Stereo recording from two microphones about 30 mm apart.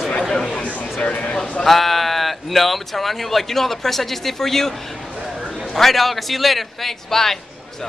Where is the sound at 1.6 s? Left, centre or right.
Centre.